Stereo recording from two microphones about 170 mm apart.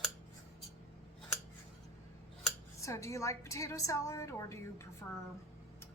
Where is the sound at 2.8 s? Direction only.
20° left (ahead or behind).